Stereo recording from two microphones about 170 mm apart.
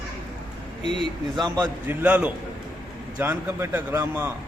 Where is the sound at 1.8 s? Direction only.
10° right (ahead or behind).